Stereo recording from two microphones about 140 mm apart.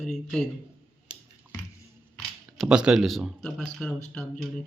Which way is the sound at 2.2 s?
Centre (ahead or behind).